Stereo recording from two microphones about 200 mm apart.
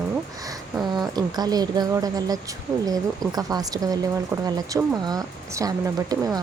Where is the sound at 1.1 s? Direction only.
20° right (ahead or behind).